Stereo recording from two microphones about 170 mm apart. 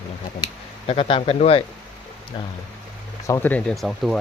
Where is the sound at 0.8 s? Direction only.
35° left (ahead or behind).